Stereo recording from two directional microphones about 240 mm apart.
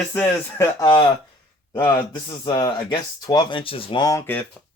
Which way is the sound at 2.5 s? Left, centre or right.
Centre.